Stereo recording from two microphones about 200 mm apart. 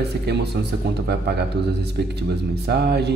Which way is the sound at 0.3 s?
55° right (ahead or behind).